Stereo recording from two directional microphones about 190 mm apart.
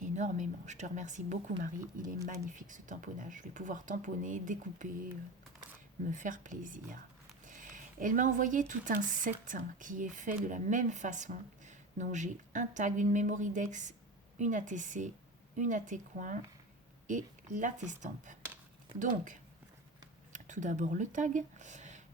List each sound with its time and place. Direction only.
0.0 s a woman's voice: 40° right (ahead or behind)
6.1 s a woman's voice: 45° right (ahead or behind)